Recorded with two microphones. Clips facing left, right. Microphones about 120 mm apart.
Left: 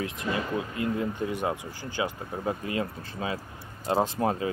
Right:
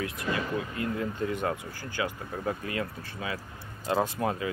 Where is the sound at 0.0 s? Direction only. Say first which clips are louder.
Left 1 dB; 20° left (ahead or behind).